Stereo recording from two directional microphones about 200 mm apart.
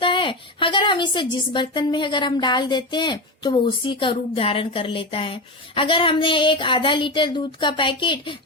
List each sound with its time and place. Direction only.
0.0 s a woman's voice: 25° left (ahead or behind)